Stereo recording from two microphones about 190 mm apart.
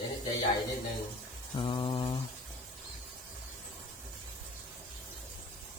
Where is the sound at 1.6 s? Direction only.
25° left (ahead or behind).